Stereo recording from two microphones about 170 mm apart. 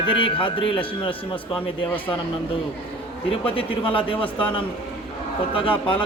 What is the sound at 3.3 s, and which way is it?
Speech, 30° left (ahead or behind).